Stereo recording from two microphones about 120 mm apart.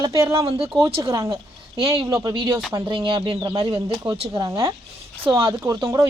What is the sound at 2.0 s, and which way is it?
Speech, 30° right (ahead or behind).